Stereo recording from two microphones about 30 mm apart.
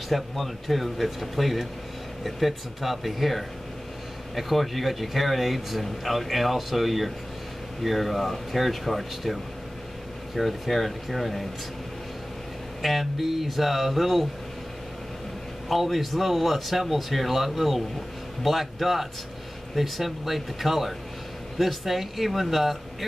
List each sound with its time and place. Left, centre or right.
0.1 s speech: centre
12.8 s speech: centre
15.7 s speech: centre